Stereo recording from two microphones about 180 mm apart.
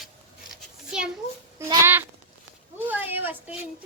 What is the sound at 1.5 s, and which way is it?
Speech, 10° right (ahead or behind).